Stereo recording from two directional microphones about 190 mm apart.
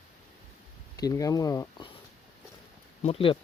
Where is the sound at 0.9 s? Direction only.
20° left (ahead or behind).